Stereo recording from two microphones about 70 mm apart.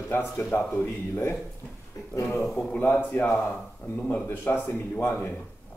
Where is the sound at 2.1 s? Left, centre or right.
Left.